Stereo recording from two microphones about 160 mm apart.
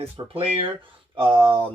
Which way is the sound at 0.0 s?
35° right (ahead or behind).